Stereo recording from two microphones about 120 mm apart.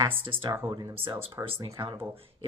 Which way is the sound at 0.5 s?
20° right (ahead or behind).